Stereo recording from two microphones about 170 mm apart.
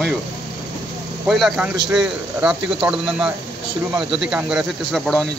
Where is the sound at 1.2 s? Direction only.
Centre (ahead or behind).